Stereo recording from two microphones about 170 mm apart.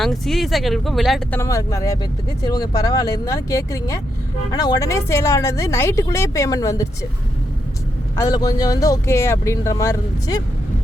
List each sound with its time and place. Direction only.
0.0 s speech: centre (ahead or behind)
1.4 s speech: 20° left (ahead or behind)
8.1 s speech: 20° left (ahead or behind)